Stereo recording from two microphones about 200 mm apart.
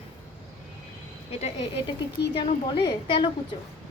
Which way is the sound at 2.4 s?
25° left (ahead or behind).